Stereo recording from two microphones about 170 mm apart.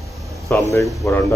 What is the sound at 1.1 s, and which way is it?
Speech, 15° left (ahead or behind).